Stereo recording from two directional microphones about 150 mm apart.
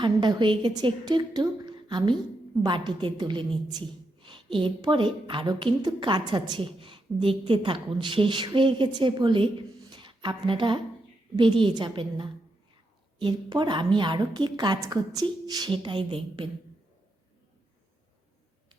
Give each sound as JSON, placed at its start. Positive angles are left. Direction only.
{"t": 0.0, "sound": "a woman's voice", "side_deg": -30}
{"t": 9.9, "sound": "a sound", "side_deg": -30}
{"t": 11.3, "sound": "a woman's voice", "side_deg": -35}